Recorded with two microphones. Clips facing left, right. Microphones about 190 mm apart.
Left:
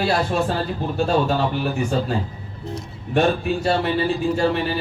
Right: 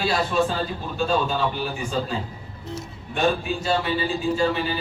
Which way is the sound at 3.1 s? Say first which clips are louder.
Left 4 dB; 65° left (ahead or behind).